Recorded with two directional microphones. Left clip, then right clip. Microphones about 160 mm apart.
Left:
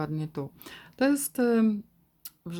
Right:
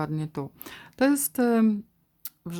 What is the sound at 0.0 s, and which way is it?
Speech, 25° right (ahead or behind).